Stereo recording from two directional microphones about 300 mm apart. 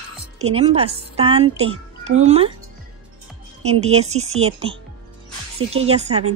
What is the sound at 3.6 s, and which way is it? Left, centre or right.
A woman's voice, right.